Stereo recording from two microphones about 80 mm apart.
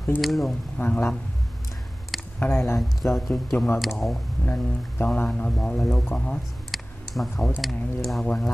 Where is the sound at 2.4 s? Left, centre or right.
Left.